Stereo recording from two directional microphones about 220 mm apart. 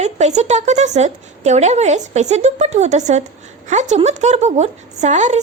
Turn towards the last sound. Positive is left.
turn(degrees=-30)  # may be behind; listen again after turning